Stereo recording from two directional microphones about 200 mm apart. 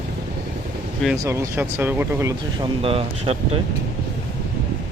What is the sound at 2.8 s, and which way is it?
Speech, 30° right (ahead or behind).